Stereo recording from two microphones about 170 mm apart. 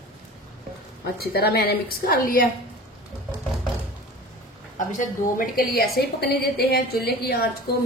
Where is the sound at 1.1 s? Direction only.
65° left (ahead or behind).